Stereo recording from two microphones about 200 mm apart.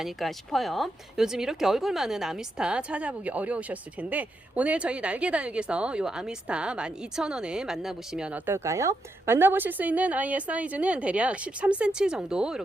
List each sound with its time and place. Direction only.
0.0 s speech: centre (ahead or behind)